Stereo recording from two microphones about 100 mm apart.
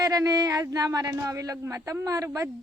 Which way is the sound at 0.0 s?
35° right (ahead or behind).